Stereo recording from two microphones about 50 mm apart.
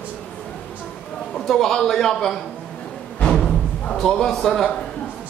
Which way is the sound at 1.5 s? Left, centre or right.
Centre.